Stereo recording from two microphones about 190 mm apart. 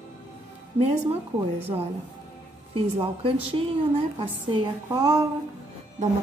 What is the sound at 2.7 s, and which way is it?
A woman's voice, 30° right (ahead or behind).